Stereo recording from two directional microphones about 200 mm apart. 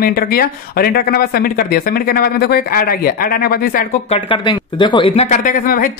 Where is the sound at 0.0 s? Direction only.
50° left (ahead or behind).